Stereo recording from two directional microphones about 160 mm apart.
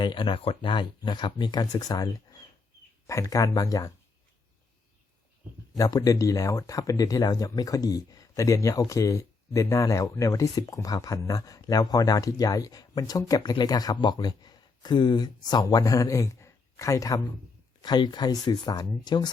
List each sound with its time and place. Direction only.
0.0 s speech: 30° left (ahead or behind)
5.7 s speech: 20° left (ahead or behind)